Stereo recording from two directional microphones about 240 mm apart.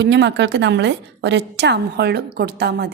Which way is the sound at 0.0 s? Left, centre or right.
Right.